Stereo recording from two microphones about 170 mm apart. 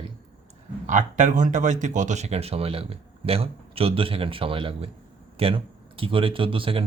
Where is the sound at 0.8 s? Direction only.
45° right (ahead or behind).